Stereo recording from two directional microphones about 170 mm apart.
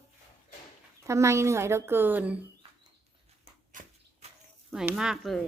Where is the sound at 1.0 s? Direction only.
15° right (ahead or behind).